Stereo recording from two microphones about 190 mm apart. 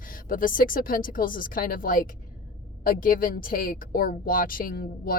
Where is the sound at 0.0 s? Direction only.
45° left (ahead or behind).